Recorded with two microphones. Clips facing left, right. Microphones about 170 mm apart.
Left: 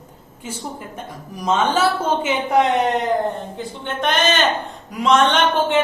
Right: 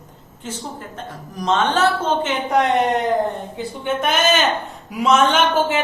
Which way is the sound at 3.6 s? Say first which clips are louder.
Right 3 dB; 5° right (ahead or behind).